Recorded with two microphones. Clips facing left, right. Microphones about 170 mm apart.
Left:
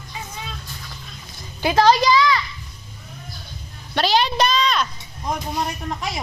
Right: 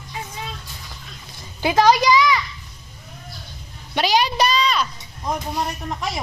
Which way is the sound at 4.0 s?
15° right (ahead or behind).